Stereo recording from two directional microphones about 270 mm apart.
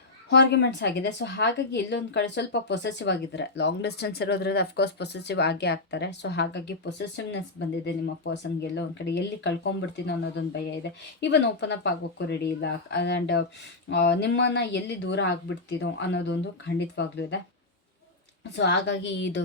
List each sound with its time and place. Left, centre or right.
0.3 s a woman's voice: left
18.5 s a woman's voice: left